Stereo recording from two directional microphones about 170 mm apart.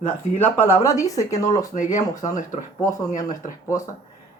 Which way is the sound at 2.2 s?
45° left (ahead or behind).